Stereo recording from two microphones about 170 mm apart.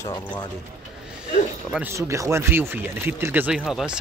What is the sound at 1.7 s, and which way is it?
Speech, 15° right (ahead or behind).